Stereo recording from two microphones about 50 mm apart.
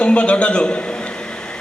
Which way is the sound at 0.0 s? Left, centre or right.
Left.